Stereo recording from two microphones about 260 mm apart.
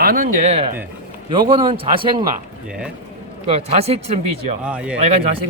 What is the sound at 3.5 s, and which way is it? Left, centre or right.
Speech, right.